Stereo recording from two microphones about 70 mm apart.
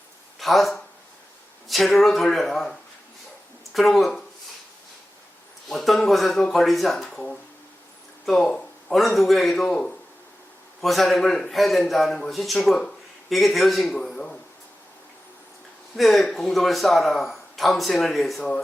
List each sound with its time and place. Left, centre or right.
0.3 s a man's voice: centre
5.6 s a man's voice: centre
8.3 s a man's voice: centre
16.0 s a man's voice: centre